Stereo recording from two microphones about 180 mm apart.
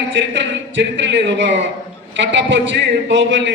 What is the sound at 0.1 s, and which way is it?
A man's voice, 90° right.